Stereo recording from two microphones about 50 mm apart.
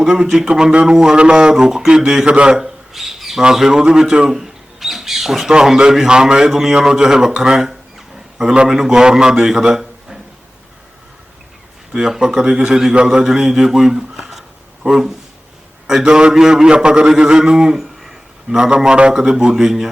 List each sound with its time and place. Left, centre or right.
0.0 s a man's voice: centre
2.2 s a man's voice: right
2.6 s bird: centre
3.4 s a man's voice: centre
11.9 s a man's voice: centre
17.7 s a sound: centre
19.1 s a man's voice: centre